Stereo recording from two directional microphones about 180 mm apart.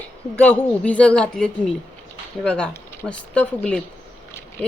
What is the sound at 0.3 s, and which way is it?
Speech, 10° left (ahead or behind).